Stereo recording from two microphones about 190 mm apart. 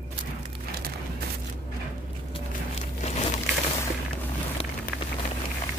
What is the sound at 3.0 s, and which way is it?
Crumpling, 35° left (ahead or behind).